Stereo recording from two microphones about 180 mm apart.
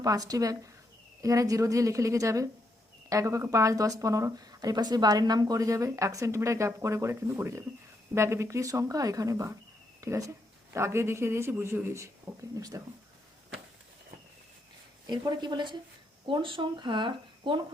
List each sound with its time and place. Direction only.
0.0 s speech: 20° right (ahead or behind)
15.0 s speech: 25° right (ahead or behind)